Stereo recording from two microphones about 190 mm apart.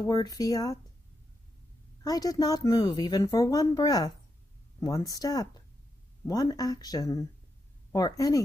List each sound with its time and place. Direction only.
0.0 s speech: 20° left (ahead or behind)
2.0 s speech: 20° left (ahead or behind)